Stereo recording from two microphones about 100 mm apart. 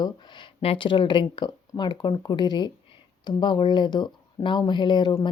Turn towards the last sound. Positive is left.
turn(degrees=50)  # may be behind; listen again after turning